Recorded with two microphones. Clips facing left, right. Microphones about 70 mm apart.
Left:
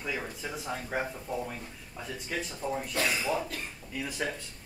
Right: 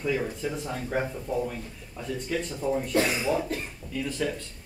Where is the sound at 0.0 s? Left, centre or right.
Centre.